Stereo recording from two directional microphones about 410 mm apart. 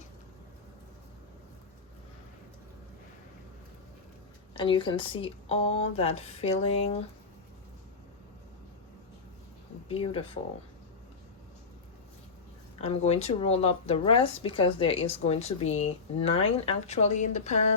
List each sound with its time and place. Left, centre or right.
4.5 s speech: centre
9.9 s speech: centre
12.8 s speech: centre